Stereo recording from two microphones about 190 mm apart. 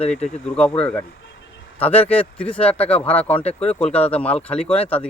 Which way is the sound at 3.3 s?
35° left (ahead or behind).